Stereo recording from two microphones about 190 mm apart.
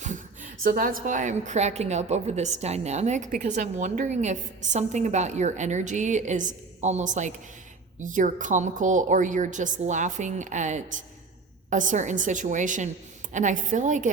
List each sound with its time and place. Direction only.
0.0 s a woman's voice: 40° right (ahead or behind)